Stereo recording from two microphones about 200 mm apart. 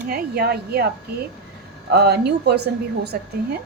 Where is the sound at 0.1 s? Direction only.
50° right (ahead or behind).